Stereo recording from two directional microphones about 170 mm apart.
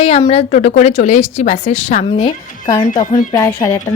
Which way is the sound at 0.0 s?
35° left (ahead or behind).